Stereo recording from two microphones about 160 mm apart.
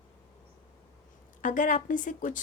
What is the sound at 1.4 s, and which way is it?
Speech, 55° left (ahead or behind).